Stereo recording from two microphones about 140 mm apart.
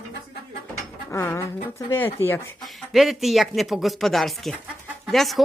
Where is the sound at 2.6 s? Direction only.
Centre (ahead or behind).